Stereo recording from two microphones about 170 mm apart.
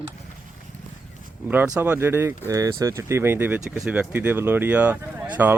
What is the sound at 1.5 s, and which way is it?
Speech, 10° right (ahead or behind).